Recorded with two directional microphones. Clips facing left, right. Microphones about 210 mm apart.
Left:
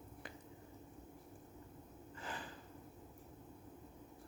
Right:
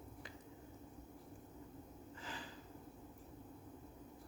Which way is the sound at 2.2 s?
55° left (ahead or behind).